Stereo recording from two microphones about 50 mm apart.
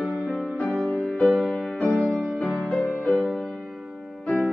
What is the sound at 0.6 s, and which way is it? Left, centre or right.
Music, centre.